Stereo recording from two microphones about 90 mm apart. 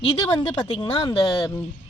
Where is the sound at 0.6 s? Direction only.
70° left (ahead or behind).